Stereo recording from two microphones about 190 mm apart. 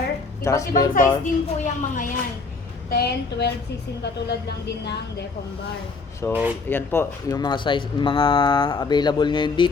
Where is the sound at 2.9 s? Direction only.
60° left (ahead or behind).